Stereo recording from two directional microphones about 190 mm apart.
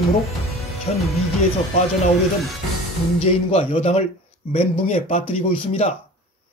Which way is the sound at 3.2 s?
35° left (ahead or behind).